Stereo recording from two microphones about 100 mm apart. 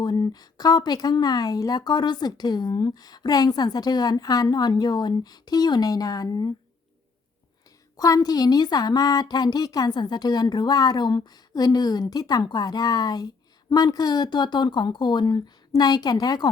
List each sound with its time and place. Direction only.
0.0 s speech: 45° left (ahead or behind)
7.9 s speech: 35° left (ahead or behind)